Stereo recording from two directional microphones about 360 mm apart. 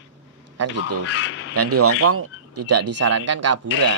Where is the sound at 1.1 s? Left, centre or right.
Left.